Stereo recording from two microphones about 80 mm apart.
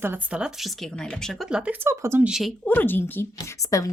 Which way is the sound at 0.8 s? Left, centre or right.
Centre.